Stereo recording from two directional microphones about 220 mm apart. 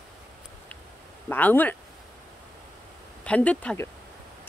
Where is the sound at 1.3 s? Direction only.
10° left (ahead or behind).